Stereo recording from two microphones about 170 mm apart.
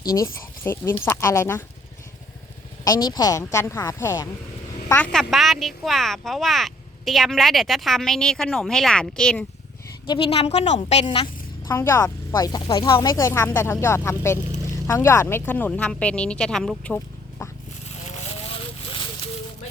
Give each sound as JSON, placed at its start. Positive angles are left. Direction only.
{"t": 0.0, "sound": "speech", "side_deg": 20}
{"t": 2.8, "sound": "a woman's voice", "side_deg": 25}
{"t": 5.1, "sound": "speech", "side_deg": 0}
{"t": 10.1, "sound": "a woman's voice", "side_deg": 30}
{"t": 11.7, "sound": "speech", "side_deg": 15}
{"t": 17.8, "sound": "a sound", "side_deg": 40}